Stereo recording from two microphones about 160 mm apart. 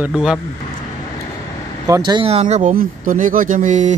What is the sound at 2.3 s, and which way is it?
Speech, 45° right (ahead or behind).